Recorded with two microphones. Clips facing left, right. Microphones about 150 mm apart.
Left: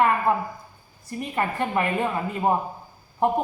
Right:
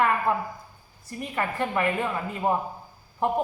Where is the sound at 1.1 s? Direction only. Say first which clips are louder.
Left 2 dB; 25° left (ahead or behind).